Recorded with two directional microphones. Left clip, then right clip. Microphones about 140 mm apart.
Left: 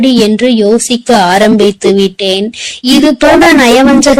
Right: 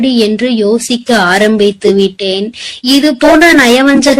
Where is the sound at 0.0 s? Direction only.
25° left (ahead or behind).